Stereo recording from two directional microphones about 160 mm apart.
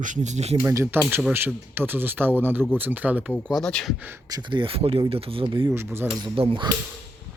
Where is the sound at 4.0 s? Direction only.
15° right (ahead or behind); by 5.7 s 35° right (ahead or behind).